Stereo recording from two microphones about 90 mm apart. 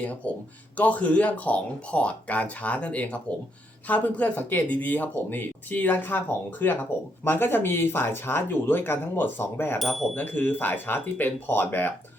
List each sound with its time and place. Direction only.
0.0 s speech: 15° left (ahead or behind)
9.7 s speech: centre (ahead or behind)
10.2 s speech: 20° left (ahead or behind)